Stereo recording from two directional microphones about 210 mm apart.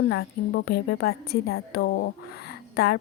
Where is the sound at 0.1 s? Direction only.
55° left (ahead or behind).